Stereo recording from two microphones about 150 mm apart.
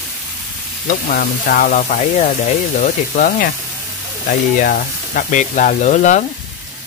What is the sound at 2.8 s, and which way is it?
Frying, 70° left (ahead or behind).